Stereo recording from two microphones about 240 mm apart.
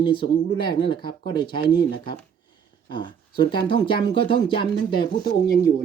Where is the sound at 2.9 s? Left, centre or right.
Centre.